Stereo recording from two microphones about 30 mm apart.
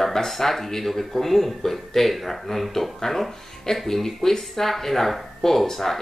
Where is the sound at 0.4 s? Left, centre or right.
Centre.